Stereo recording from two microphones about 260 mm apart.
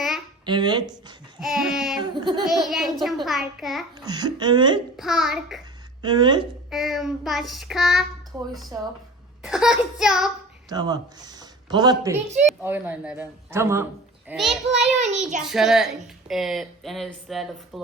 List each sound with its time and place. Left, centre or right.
0.4 s a woman's voice: centre
1.4 s speech: centre
2.0 s a woman's voice: centre
2.5 s speech: centre
4.0 s a woman's voice: centre
4.9 s speech: centre
6.0 s speech: centre
6.7 s speech: centre
9.4 s speech: centre
10.7 s a woman's voice: centre
14.9 s a child's voice: right
15.4 s speech: centre